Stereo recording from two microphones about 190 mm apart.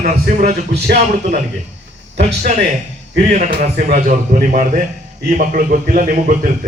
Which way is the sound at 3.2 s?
40° right (ahead or behind).